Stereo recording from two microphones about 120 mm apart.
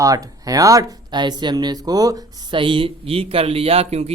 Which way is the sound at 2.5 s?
45° right (ahead or behind).